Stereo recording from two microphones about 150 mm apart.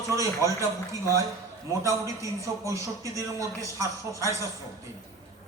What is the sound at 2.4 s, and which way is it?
A man's voice, 20° right (ahead or behind).